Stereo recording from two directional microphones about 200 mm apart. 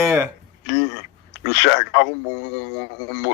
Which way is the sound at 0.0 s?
15° right (ahead or behind).